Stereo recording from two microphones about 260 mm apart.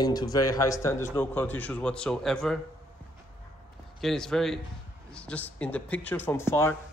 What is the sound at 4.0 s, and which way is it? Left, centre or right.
A man's voice, centre.